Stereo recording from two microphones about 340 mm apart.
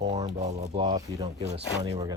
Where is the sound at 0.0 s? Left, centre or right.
Centre.